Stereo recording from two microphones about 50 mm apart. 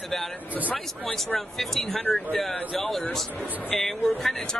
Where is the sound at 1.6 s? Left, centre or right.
Centre.